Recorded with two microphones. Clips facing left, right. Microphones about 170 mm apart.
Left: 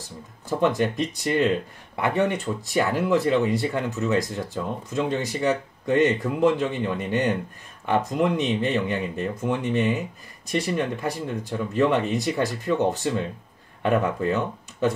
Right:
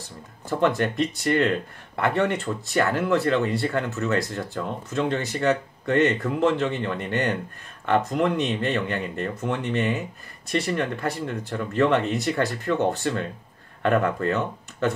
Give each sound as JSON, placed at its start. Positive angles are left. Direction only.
{"t": 0.6, "sound": "speech", "side_deg": 15}